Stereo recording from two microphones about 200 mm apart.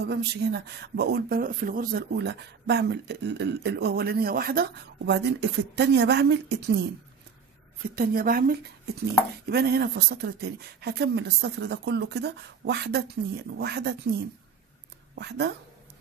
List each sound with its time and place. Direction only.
0.0 s speech: 55° right (ahead or behind)
4.9 s speech: 60° right (ahead or behind)
7.9 s a woman's voice: 45° right (ahead or behind)
15.1 s speech: 60° right (ahead or behind)